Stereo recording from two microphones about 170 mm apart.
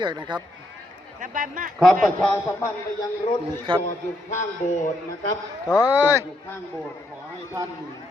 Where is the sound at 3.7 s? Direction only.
30° right (ahead or behind).